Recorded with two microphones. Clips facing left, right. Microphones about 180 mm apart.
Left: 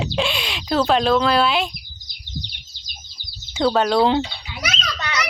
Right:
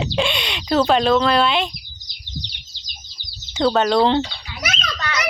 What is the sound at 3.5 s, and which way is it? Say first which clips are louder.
Speech: right 1 dB; 5° left (ahead or behind).